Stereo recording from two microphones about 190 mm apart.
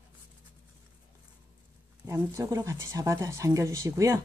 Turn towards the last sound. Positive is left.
turn(degrees=-15)  # may be behind; listen again after turning